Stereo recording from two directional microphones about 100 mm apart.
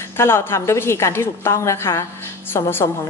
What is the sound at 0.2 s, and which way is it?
A woman's voice, 25° left (ahead or behind).